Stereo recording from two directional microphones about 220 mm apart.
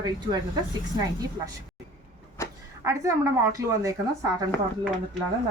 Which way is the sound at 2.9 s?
15° right (ahead or behind).